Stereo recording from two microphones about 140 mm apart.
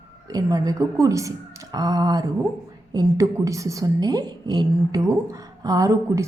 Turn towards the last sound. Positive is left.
turn(degrees=-25)  # may be behind; listen again after turning